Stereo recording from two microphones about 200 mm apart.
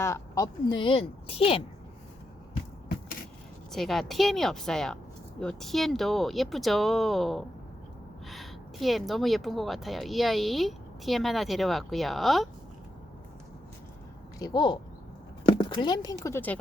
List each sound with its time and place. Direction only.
0.0 s speech: 15° left (ahead or behind)
3.7 s speech: centre (ahead or behind)
14.3 s speech: 20° left (ahead or behind)